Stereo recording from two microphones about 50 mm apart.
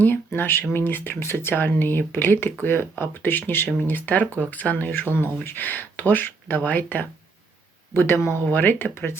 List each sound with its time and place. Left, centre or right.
0.3 s speech: left
1.5 s speech: left
7.9 s speech: left
8.4 s speech: left